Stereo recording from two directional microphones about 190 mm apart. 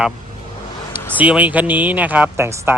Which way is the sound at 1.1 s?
10° right (ahead or behind).